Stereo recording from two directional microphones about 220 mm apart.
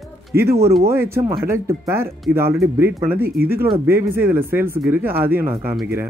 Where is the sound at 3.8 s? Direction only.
10° right (ahead or behind).